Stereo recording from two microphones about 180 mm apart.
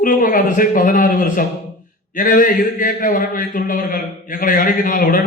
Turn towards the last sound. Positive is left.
turn(degrees=50)  # may be behind; listen again after turning